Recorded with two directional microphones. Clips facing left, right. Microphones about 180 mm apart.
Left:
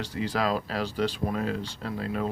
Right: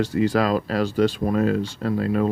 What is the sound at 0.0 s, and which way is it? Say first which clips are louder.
Speech: right 8 dB; 50° right (ahead or behind).